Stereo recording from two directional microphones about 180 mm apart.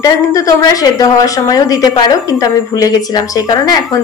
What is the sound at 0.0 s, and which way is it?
Speech, 20° left (ahead or behind).